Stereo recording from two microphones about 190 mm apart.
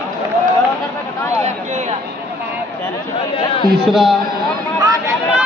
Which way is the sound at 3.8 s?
Centre (ahead or behind).